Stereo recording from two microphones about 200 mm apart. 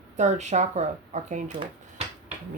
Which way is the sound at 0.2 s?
35° right (ahead or behind).